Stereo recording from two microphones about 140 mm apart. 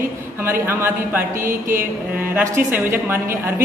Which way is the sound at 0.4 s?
15° right (ahead or behind).